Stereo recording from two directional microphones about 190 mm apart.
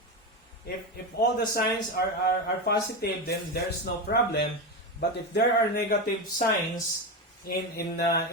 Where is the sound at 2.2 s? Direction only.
55° left (ahead or behind).